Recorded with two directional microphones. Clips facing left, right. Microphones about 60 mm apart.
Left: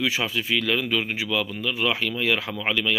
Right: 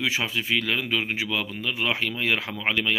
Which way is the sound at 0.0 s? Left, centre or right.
Right.